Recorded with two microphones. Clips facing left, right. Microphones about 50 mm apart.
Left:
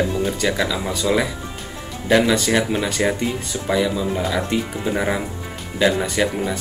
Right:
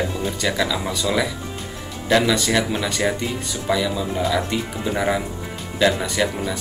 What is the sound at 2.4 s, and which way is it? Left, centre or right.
Speech, centre.